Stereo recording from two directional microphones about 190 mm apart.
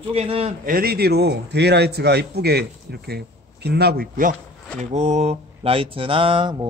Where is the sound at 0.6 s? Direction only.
50° right (ahead or behind).